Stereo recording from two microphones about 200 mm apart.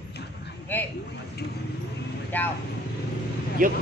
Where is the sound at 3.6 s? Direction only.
40° right (ahead or behind).